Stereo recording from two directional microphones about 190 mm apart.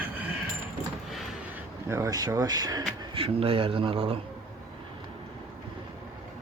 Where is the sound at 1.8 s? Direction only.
15° right (ahead or behind).